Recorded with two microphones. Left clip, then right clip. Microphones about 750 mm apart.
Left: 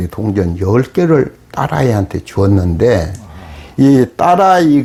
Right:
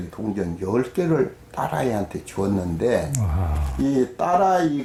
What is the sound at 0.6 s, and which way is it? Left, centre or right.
Speech, left.